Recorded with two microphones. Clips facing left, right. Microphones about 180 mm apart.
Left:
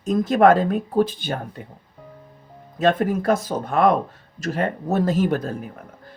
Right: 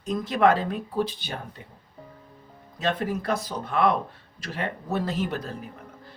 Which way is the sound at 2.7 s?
50° left (ahead or behind).